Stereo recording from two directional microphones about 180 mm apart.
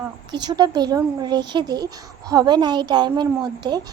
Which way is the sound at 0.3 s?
25° right (ahead or behind).